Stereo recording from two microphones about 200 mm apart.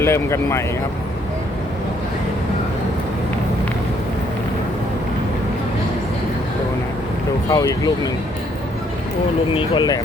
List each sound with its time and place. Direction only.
0.0 s speech: 15° left (ahead or behind)
7.5 s speech: 15° left (ahead or behind)
9.6 s speech: 20° left (ahead or behind)